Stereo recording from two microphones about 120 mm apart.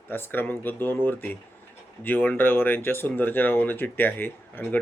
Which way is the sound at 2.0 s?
15° left (ahead or behind).